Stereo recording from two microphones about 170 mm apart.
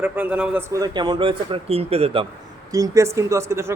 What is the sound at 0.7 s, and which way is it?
A man's voice, 25° right (ahead or behind).